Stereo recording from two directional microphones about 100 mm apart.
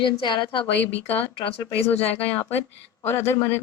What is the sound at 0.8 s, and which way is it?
Speech, 15° left (ahead or behind).